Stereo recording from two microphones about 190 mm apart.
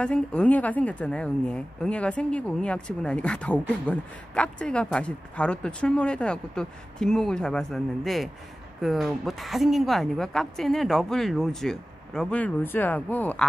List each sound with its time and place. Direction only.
0.0 s a woman's voice: 5° left (ahead or behind)